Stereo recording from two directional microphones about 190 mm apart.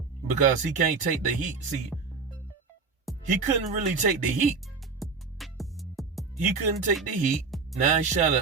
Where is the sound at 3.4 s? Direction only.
40° right (ahead or behind).